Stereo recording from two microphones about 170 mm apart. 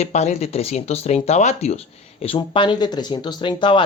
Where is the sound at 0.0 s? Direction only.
40° left (ahead or behind).